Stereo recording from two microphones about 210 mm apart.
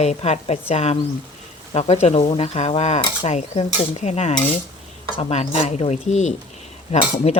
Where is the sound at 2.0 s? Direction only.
30° left (ahead or behind).